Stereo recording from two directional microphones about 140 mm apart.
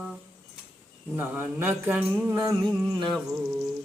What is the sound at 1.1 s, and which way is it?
Mantra, 15° right (ahead or behind).